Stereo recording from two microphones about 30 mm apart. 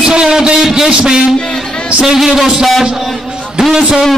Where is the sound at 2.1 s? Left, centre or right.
Centre.